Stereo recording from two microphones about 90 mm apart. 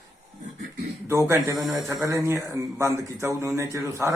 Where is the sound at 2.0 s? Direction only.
35° right (ahead or behind).